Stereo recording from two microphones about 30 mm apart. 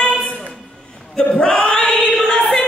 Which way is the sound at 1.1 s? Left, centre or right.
Left.